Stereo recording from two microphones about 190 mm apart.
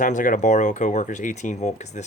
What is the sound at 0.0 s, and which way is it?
Speech, 45° left (ahead or behind).